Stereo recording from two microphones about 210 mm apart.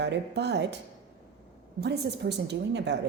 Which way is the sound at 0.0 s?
55° right (ahead or behind).